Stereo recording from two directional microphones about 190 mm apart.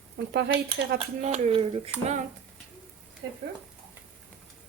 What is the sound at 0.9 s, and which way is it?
Speech, 35° right (ahead or behind).